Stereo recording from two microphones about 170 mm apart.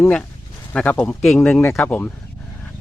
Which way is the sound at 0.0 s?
10° left (ahead or behind).